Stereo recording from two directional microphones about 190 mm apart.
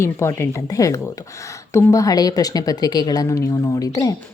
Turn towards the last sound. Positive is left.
turn(degrees=20)  # may be behind; listen again after turning